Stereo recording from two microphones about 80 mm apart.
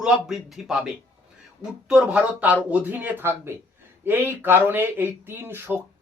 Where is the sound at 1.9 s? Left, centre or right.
Centre.